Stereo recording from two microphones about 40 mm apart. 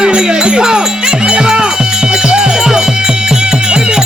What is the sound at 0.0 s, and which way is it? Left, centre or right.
Music, right.